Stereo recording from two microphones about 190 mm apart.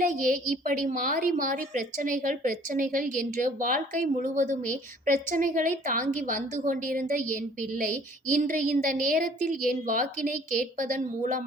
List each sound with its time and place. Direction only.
0.0 s a woman's voice: 45° right (ahead or behind)